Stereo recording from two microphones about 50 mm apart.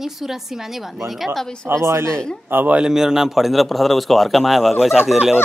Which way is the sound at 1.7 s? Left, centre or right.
Right.